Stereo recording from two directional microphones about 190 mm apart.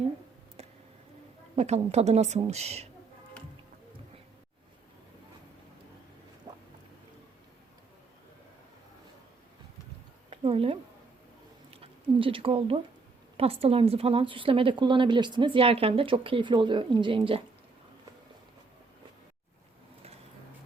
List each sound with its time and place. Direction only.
1.5 s a woman's voice: 35° right (ahead or behind)
6.5 s boat: 20° right (ahead or behind)
10.2 s a sound: 30° right (ahead or behind)
13.3 s a woman's voice: 30° right (ahead or behind)